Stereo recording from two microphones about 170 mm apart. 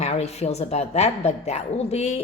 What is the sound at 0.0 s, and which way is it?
A woman's voice, 40° left (ahead or behind).